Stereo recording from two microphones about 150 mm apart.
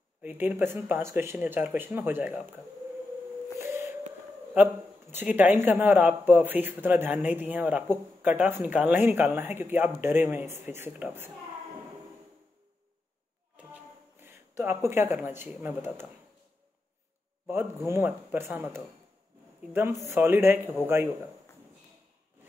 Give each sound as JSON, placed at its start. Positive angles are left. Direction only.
{"t": 0.2, "sound": "speech", "side_deg": -10}
{"t": 3.5, "sound": "a sound", "side_deg": -15}
{"t": 5.1, "sound": "speech", "side_deg": -10}
{"t": 14.2, "sound": "speech", "side_deg": -15}
{"t": 17.5, "sound": "speech", "side_deg": -20}